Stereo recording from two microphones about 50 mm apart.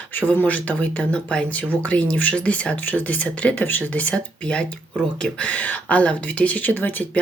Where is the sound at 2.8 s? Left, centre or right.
Left.